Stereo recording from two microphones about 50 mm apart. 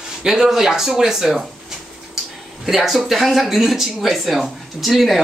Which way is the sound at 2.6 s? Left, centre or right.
Centre.